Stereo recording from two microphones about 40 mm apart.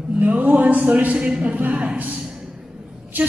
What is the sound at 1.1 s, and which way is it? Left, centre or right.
Speech, right.